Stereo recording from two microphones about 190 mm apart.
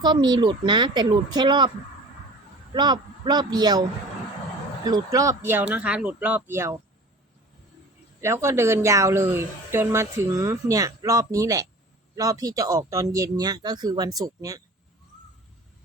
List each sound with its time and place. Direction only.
0.0 s speech: 25° right (ahead or behind)
2.7 s speech: 20° right (ahead or behind)
8.2 s speech: 15° right (ahead or behind)